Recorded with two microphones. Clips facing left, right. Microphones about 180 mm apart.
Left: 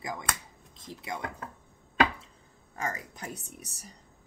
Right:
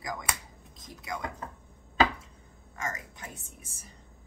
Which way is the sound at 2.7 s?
35° left (ahead or behind).